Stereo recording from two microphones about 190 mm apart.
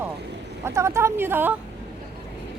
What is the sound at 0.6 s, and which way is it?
Speech, 15° right (ahead or behind).